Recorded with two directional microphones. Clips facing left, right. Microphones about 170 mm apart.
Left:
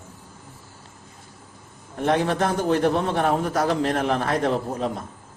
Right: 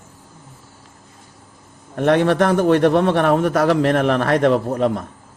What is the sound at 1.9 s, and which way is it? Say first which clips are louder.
A man's voice: right 6 dB; 70° right (ahead or behind).